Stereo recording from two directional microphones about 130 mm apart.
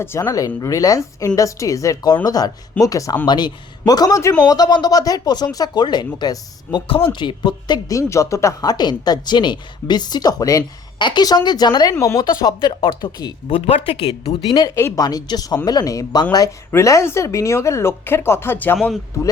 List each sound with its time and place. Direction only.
0.0 s speech: 20° left (ahead or behind)
13.7 s speech: 45° left (ahead or behind)
14.5 s speech: 30° left (ahead or behind)